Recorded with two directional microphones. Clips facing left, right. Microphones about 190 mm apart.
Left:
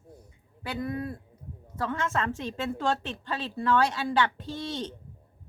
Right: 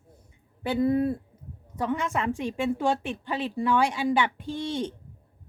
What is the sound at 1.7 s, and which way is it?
A woman's voice, 15° right (ahead or behind).